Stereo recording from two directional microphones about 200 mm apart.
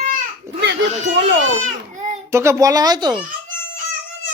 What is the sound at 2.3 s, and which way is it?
Speech, 15° right (ahead or behind).